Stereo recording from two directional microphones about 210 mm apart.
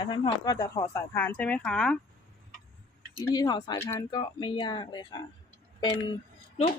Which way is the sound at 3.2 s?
15° left (ahead or behind).